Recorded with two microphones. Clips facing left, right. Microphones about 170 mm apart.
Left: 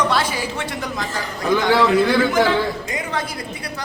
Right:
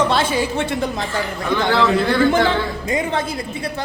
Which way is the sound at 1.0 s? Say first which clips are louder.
Right 3 dB; 40° left (ahead or behind).